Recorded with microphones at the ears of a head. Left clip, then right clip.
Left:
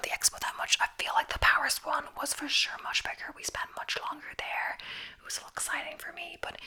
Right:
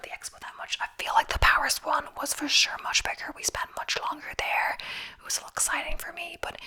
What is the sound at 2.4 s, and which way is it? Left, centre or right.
Speech, right.